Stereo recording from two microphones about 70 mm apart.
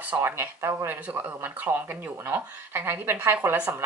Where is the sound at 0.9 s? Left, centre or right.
Right.